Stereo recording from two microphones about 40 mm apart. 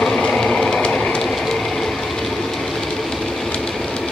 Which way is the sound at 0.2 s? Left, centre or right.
Centre.